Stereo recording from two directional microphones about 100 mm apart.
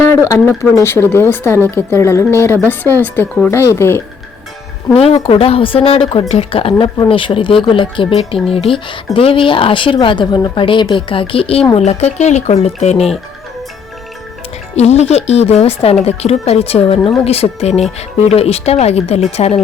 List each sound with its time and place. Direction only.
0.0 s a woman's voice: 25° left (ahead or behind)
4.9 s speech: 75° left (ahead or behind)
11.9 s speech: 90° left
14.8 s speech: 90° left